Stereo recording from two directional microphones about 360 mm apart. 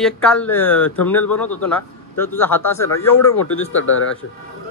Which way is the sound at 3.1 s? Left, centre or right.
Left.